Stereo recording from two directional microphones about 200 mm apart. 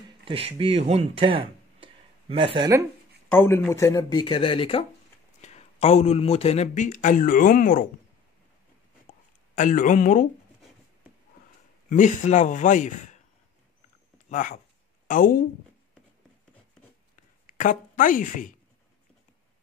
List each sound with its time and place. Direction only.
0.2 s speech: 30° right (ahead or behind)
3.3 s speech: 10° left (ahead or behind); by 7.8 s 40° left (ahead or behind)
9.6 s speech: 40° left (ahead or behind)
11.9 s speech: 35° left (ahead or behind)
14.3 s speech: 35° left (ahead or behind)
17.5 s a woman's voice: 40° left (ahead or behind)